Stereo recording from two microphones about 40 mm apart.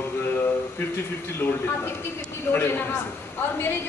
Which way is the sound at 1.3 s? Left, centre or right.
Left.